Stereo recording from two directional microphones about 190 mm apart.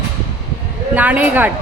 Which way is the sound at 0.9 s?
10° right (ahead or behind).